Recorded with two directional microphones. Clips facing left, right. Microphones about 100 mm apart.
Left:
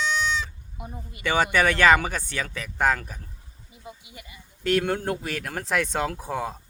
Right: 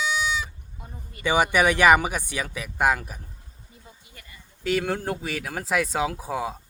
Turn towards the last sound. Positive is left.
turn(degrees=-5)  # may be behind; listen again after turning